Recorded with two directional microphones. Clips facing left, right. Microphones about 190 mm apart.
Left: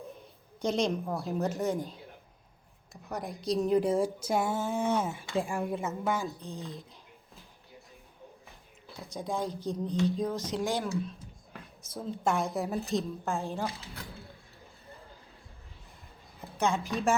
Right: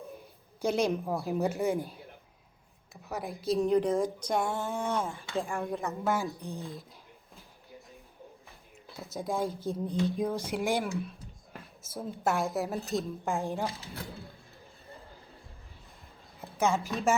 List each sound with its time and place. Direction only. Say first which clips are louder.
0.6 s speech: right 1 dB; 10° right (ahead or behind)
1.2 s speech: right 1 dB; 10° right (ahead or behind); by 5.7 s 15° left (ahead or behind)
5.7 s speech: right 3 dB; centre (ahead or behind)
6.1 s speech: right 1 dB; 15° right (ahead or behind)
8.4 s a sound: even; centre (ahead or behind)
9.6 s speech: left 1 dB; 10° right (ahead or behind)
13.2 s speech: right 1 dB; 15° right (ahead or behind)
16.4 s a woman's voice: right 1 dB; centre (ahead or behind)